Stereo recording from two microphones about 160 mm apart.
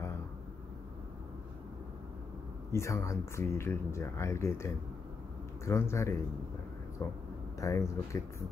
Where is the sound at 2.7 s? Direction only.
15° left (ahead or behind).